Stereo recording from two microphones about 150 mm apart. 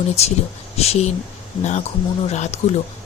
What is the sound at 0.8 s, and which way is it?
Speech, 45° left (ahead or behind).